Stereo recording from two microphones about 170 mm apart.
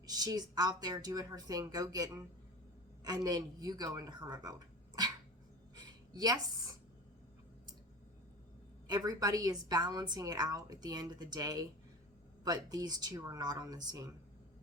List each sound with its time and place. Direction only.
0.0 s a woman's voice: 20° right (ahead or behind)
5.7 s a sound: 25° right (ahead or behind)
8.9 s a woman's voice: 25° right (ahead or behind)